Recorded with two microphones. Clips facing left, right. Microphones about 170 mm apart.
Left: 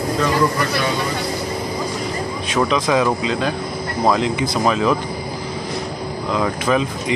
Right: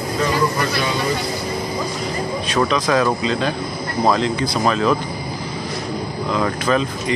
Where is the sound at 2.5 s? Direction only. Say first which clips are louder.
Left 1 dB; 10° left (ahead or behind).